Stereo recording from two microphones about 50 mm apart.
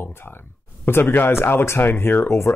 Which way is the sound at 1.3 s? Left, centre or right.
Left.